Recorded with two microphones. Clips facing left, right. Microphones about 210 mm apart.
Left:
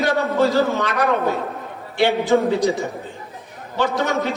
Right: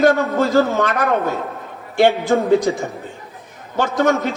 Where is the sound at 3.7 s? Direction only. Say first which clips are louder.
Right 4 dB; 50° right (ahead or behind).